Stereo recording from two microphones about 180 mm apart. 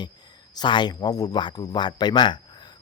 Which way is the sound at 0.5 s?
25° left (ahead or behind).